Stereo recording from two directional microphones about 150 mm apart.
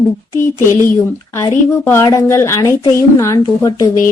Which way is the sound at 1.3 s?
15° left (ahead or behind).